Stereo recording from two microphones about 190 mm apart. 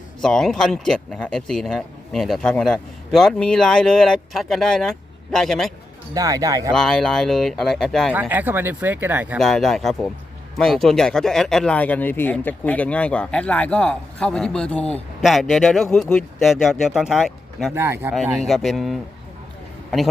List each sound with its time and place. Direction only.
0.2 s speech: centre (ahead or behind)
6.1 s speech: 20° right (ahead or behind)
6.7 s speech: 5° left (ahead or behind)
8.1 s speech: 10° right (ahead or behind)
9.4 s speech: centre (ahead or behind)
17.7 s speech: 15° right (ahead or behind)
18.1 s speech: centre (ahead or behind)